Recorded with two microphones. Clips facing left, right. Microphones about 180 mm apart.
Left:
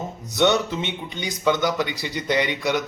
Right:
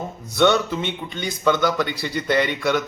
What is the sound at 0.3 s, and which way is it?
A man's voice, 20° left (ahead or behind).